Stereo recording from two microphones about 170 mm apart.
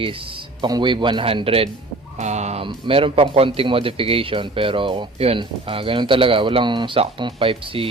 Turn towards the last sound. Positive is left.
turn(degrees=-30)  # may be behind; listen again after turning